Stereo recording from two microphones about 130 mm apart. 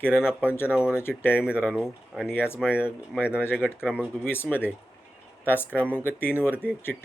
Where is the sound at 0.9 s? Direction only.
15° left (ahead or behind).